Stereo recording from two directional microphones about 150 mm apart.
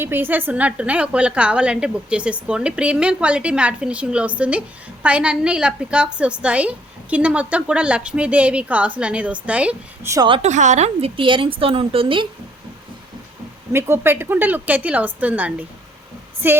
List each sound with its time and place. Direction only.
0.0 s a woman's voice: 15° right (ahead or behind)
10.4 s a woman's voice: 55° right (ahead or behind); by 12.3 s 35° right (ahead or behind)
13.7 s a woman's voice: 15° right (ahead or behind)